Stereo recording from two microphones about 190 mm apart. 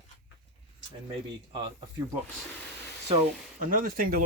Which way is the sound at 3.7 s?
50° right (ahead or behind).